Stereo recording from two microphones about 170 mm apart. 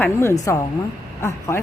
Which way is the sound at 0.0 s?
15° left (ahead or behind).